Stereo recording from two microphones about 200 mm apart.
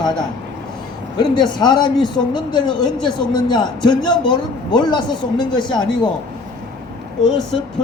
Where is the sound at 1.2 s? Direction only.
20° left (ahead or behind).